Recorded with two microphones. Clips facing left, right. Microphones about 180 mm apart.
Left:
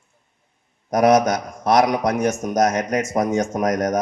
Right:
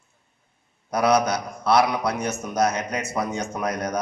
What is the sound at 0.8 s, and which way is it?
A man's voice, 45° left (ahead or behind).